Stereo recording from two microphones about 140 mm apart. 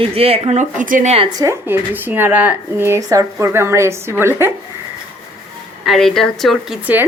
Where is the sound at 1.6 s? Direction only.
15° right (ahead or behind).